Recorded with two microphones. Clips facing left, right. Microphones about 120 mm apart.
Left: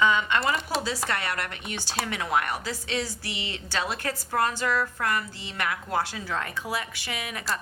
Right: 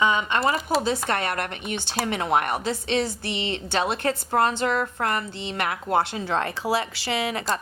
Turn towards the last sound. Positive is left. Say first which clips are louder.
# right 7 dB
turn(degrees=-30)  # may be behind; listen again after turning